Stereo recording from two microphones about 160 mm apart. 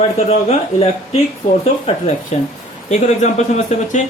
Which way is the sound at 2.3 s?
45° left (ahead or behind).